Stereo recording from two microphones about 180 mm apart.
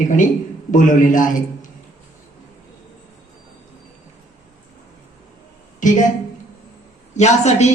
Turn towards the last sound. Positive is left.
turn(degrees=40)  # may be behind; listen again after turning